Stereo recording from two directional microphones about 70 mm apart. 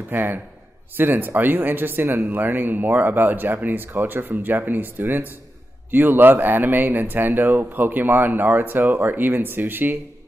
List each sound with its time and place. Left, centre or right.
0.1 s speech: right